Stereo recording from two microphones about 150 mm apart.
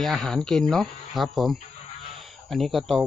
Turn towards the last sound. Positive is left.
turn(degrees=0)  # may be behind; listen again after turning